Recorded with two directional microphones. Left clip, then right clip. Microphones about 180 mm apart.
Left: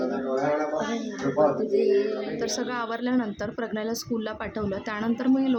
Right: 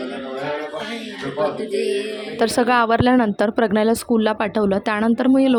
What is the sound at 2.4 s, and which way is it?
Speech, 50° right (ahead or behind).